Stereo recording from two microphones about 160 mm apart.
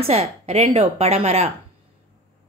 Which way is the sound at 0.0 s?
40° right (ahead or behind).